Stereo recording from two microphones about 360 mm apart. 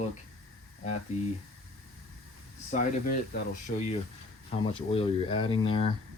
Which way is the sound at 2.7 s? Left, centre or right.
Centre.